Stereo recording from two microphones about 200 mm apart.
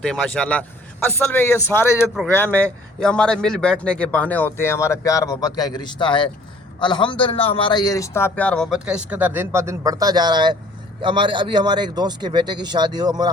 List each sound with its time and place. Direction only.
0.0 s a man's voice: 5° left (ahead or behind); by 13.3 s 20° right (ahead or behind)